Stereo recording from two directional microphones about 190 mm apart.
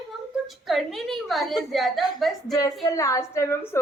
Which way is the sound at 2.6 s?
20° left (ahead or behind).